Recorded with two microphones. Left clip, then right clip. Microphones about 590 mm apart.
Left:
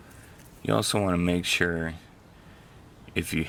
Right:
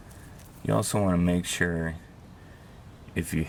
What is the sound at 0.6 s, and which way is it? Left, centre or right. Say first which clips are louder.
Speech: left 1 dB; centre.